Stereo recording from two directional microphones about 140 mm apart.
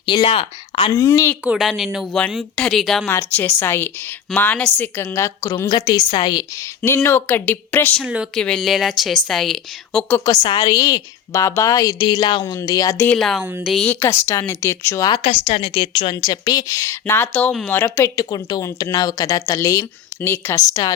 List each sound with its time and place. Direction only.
0.0 s speech: 35° left (ahead or behind)
0.9 s a woman's voice: 20° left (ahead or behind)
1.5 s a woman's voice: centre (ahead or behind)
3.1 s a woman's voice: 15° left (ahead or behind); by 6.4 s 30° left (ahead or behind)
6.8 s speech: 15° left (ahead or behind)
8.0 s a woman's voice: 5° right (ahead or behind)
10.2 s a woman's voice: 30° left (ahead or behind)
13.1 s a woman's voice: centre (ahead or behind)
13.8 s a woman's voice: 15° left (ahead or behind)
15.1 s a woman's voice: 45° left (ahead or behind); by 20.9 s 25° left (ahead or behind)